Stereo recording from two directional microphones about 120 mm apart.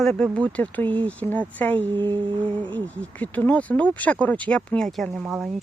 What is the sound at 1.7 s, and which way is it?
Speech, 40° right (ahead or behind).